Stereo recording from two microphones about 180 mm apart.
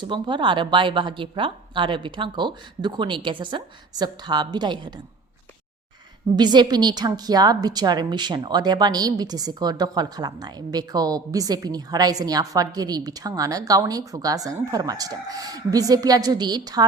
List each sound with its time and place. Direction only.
0.0 s a woman's voice: 25° right (ahead or behind)
6.3 s a woman's voice: 25° right (ahead or behind)